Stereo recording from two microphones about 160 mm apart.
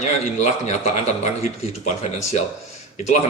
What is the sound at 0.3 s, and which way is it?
A man's voice, 45° left (ahead or behind).